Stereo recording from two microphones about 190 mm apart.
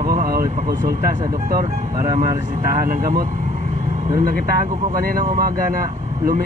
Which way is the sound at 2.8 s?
45° right (ahead or behind).